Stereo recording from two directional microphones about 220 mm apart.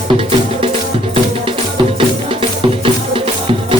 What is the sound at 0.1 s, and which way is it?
Music, 25° right (ahead or behind).